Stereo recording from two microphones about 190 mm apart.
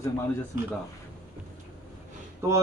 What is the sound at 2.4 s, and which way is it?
Speech, 15° right (ahead or behind).